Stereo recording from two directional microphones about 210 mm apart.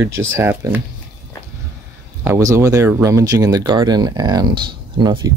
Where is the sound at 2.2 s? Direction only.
15° right (ahead or behind).